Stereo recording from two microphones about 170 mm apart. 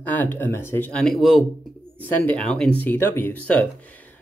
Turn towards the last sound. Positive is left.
turn(degrees=10)  # may be behind; listen again after turning